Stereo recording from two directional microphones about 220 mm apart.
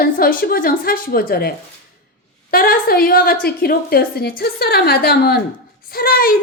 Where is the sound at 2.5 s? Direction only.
45° left (ahead or behind).